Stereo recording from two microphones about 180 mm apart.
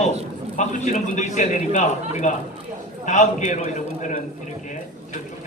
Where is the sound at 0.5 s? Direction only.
40° left (ahead or behind).